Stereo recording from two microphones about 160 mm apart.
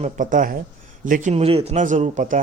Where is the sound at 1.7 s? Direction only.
50° right (ahead or behind).